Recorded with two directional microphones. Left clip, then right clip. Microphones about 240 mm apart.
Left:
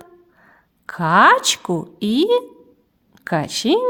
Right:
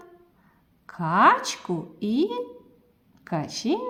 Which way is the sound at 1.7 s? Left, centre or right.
Left.